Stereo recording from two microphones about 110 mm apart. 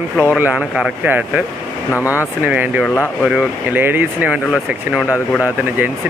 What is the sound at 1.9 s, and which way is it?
Speech, 25° left (ahead or behind).